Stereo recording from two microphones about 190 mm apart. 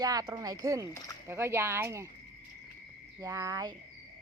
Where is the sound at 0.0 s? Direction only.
20° right (ahead or behind).